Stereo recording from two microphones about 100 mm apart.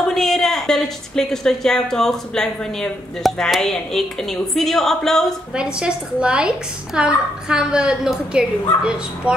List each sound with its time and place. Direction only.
0.1 s speech: 5° left (ahead or behind)
5.5 s a woman's voice: 10° right (ahead or behind)